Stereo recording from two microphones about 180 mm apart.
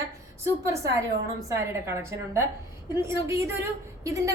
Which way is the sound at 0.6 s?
15° right (ahead or behind).